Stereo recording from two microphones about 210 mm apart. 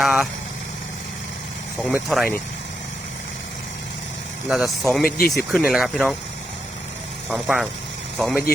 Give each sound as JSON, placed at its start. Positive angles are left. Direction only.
{"t": 0.0, "sound": "speech", "side_deg": 0}
{"t": 1.8, "sound": "speech", "side_deg": 0}
{"t": 4.4, "sound": "speech", "side_deg": 0}
{"t": 5.0, "sound": "speech", "side_deg": 45}
{"t": 5.5, "sound": "speech", "side_deg": 0}
{"t": 7.3, "sound": "speech", "side_deg": -5}